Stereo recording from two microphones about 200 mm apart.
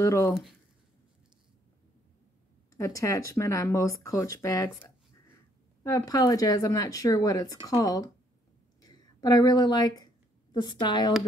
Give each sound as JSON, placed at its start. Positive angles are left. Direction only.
{"t": 0.0, "sound": "speech", "side_deg": 15}
{"t": 2.7, "sound": "speech", "side_deg": 15}
{"t": 8.8, "sound": "a sound", "side_deg": 20}